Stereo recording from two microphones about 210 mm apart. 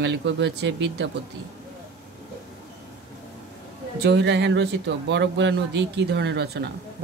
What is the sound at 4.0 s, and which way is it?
Speech, 55° right (ahead or behind).